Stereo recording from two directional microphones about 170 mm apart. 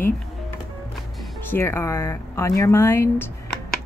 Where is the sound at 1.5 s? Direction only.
15° left (ahead or behind).